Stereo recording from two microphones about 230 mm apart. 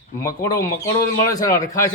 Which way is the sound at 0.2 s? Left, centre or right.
Centre.